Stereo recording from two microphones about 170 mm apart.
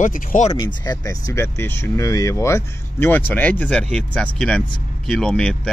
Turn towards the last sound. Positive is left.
turn(degrees=5)  # may be behind; listen again after turning